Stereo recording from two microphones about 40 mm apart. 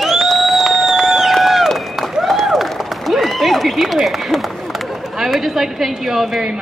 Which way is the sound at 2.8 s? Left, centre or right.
Centre.